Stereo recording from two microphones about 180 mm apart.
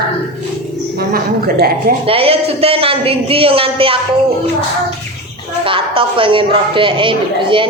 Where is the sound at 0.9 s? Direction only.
60° right (ahead or behind).